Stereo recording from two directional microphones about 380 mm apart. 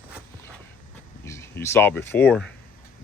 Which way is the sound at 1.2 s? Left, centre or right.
Centre.